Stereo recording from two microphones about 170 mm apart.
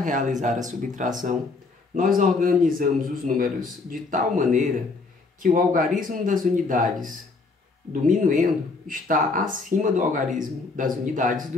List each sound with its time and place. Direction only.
0.0 s speech: 50° right (ahead or behind)